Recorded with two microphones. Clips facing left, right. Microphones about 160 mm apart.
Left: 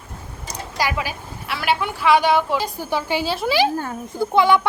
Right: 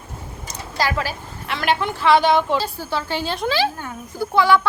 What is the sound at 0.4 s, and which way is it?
A woman's voice, 10° left (ahead or behind).